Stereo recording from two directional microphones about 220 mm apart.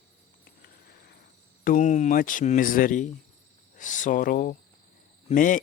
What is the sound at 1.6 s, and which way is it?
Speech, 35° left (ahead or behind).